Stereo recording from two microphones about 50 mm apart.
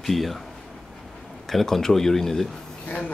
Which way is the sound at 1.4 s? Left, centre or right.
Centre.